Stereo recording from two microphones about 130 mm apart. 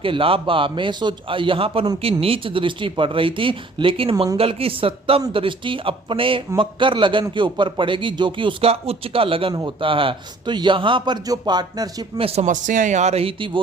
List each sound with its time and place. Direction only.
0.0 s a man's voice: 45° right (ahead or behind)
12.1 s speech: 50° right (ahead or behind)
12.5 s speech: 75° right (ahead or behind); by 13.6 s 40° right (ahead or behind)